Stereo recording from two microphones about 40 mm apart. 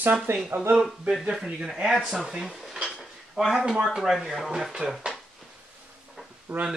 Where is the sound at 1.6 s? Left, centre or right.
Centre.